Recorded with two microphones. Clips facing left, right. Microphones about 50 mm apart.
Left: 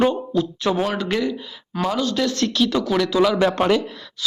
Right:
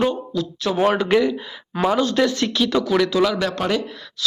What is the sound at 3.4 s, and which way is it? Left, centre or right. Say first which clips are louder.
Speech: left 4 dB; left.